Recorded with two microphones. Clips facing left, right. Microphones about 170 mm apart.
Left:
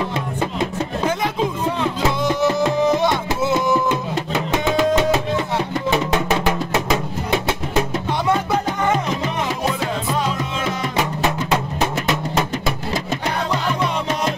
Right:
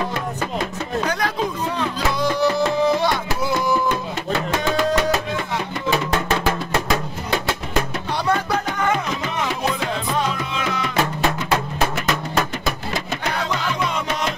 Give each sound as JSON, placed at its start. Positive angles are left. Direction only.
{"t": 1.0, "sound": "music", "side_deg": 20}
{"t": 11.0, "sound": "music", "side_deg": 20}